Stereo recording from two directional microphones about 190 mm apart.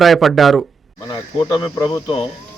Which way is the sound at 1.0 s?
25° left (ahead or behind).